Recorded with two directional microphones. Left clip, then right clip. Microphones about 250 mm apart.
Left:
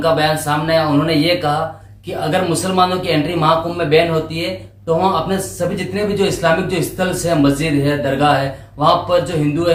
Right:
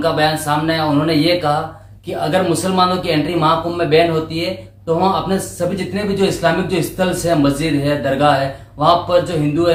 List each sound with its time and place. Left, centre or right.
0.0 s speech: centre
5.5 s speech: centre